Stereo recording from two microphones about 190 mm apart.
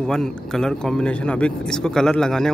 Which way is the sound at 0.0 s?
5° left (ahead or behind).